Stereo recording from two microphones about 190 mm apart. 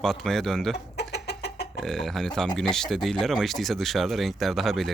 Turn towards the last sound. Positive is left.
turn(degrees=0)  # may be behind; listen again after turning